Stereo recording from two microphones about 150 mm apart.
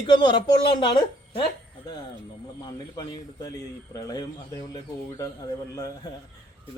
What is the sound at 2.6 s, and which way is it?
Speech, 30° left (ahead or behind).